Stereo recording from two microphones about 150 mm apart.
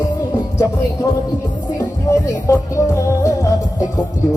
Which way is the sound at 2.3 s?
20° left (ahead or behind).